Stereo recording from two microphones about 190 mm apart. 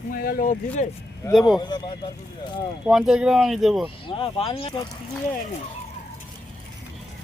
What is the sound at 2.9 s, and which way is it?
Speech, 5° right (ahead or behind).